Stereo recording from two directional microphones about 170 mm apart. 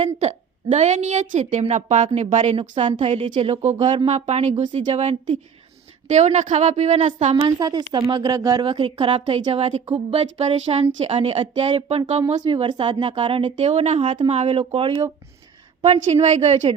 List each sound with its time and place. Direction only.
0.0 s a woman's voice: 40° right (ahead or behind)
7.6 s speech: 25° right (ahead or behind)
13.6 s speech: 45° right (ahead or behind)
15.8 s speech: 40° right (ahead or behind)